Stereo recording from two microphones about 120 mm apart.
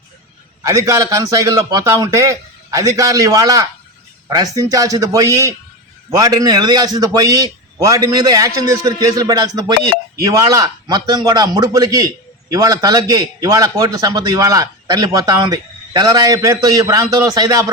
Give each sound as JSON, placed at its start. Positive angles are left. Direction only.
{"t": 0.6, "sound": "a man's voice", "side_deg": -25}